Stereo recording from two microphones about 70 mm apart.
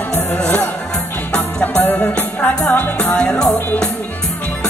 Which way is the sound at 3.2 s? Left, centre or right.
Centre.